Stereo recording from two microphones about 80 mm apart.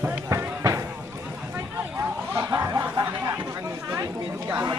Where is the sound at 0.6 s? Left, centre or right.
Right.